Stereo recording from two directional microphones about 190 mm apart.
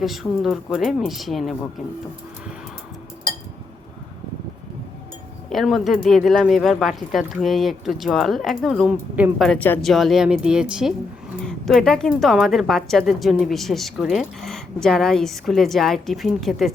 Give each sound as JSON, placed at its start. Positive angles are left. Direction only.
{"t": 0.0, "sound": "a woman's voice", "side_deg": 0}
{"t": 5.5, "sound": "a woman's voice", "side_deg": 0}
{"t": 9.5, "sound": "a woman's voice", "side_deg": 10}